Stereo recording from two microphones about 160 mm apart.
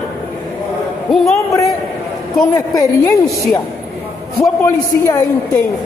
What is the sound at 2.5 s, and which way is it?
Speech, 20° left (ahead or behind).